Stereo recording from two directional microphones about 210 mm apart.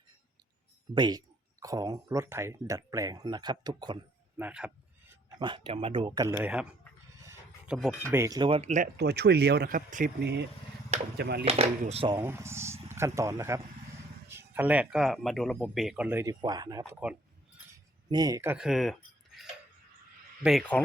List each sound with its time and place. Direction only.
0.9 s speech: 20° right (ahead or behind)
4.4 s a sound: 5° right (ahead or behind)
5.4 s speech: 20° right (ahead or behind); by 6.7 s 5° right (ahead or behind)
7.7 s speech: centre (ahead or behind)
8.0 s speech: 10° right (ahead or behind); by 8.9 s 35° right (ahead or behind)
9.0 s speech: 50° right (ahead or behind)
11.4 s speech: 30° right (ahead or behind)
12.2 s speech: 10° right (ahead or behind)